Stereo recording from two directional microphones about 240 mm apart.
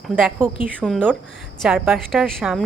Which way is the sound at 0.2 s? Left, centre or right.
Centre.